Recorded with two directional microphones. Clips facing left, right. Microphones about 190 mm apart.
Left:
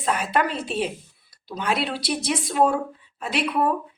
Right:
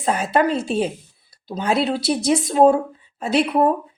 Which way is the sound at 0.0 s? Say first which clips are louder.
Right 5 dB; 30° right (ahead or behind).